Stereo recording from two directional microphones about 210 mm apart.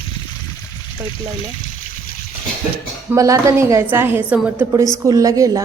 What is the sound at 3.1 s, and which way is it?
A woman's voice, 15° right (ahead or behind).